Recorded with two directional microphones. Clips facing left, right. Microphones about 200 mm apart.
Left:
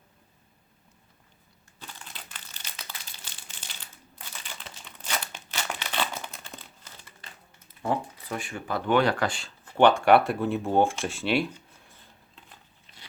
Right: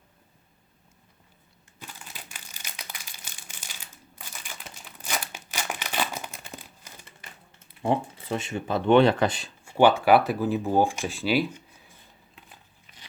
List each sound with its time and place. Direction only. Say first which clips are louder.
1.8 s crumpling: right 1 dB; 10° right (ahead or behind)
7.8 s speech: right 3 dB; 25° right (ahead or behind)
9.7 s speech: even; 5° right (ahead or behind)